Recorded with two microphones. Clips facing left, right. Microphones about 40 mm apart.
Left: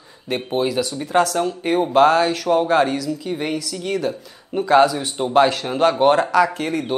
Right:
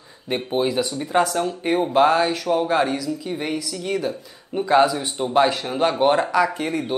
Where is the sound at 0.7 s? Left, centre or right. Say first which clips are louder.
Left 1 dB; right.